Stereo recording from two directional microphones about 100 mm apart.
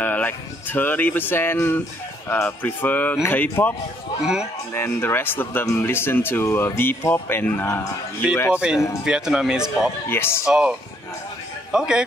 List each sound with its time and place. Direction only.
0.0 s speech: 15° left (ahead or behind)
4.7 s speech: 20° left (ahead or behind)
8.5 s a man's voice: 10° right (ahead or behind)
10.0 s speech: 25° left (ahead or behind)
10.4 s a man's voice: 5° right (ahead or behind)